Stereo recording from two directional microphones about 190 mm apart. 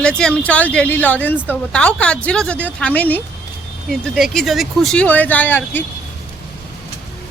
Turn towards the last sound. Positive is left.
turn(degrees=10)  # may be behind; listen again after turning